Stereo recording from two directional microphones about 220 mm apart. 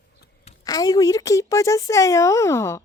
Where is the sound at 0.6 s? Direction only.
15° left (ahead or behind).